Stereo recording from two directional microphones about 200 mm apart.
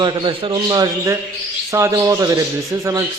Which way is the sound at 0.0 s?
20° right (ahead or behind).